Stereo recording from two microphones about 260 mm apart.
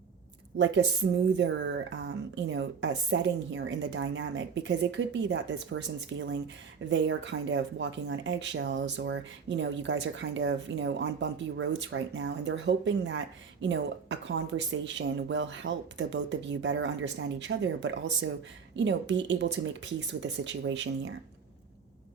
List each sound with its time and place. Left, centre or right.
1.4 s speech: right